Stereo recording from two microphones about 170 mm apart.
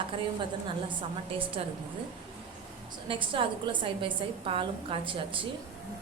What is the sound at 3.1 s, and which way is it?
A woman's voice, 30° right (ahead or behind).